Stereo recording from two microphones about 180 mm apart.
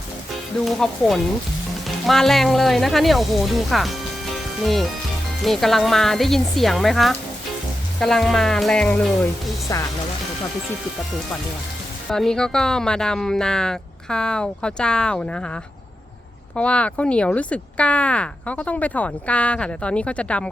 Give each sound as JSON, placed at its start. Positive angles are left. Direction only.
{"t": 0.6, "sound": "speech", "side_deg": 0}
{"t": 9.7, "sound": "speech", "side_deg": 20}
{"t": 12.1, "sound": "speech", "side_deg": 5}
{"t": 16.6, "sound": "speech", "side_deg": 5}